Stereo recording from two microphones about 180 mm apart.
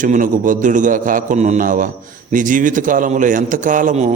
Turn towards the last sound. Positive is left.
turn(degrees=-40)  # may be behind; listen again after turning